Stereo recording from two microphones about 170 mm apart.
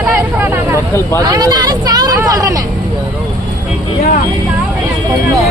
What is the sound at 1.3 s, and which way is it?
Speech, 20° right (ahead or behind).